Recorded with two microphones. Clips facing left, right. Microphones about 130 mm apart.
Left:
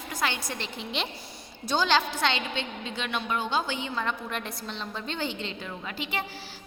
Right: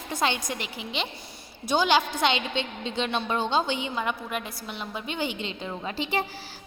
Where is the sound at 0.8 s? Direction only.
Centre (ahead or behind).